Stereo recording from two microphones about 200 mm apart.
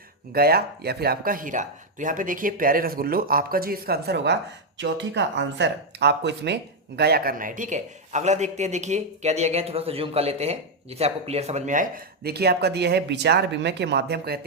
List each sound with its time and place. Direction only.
0.3 s speech: 50° right (ahead or behind)